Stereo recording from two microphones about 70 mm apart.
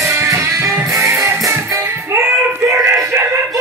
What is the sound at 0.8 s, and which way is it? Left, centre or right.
Music, right.